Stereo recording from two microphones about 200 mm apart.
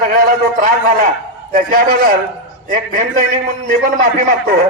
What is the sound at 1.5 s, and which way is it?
A man's voice, 45° right (ahead or behind).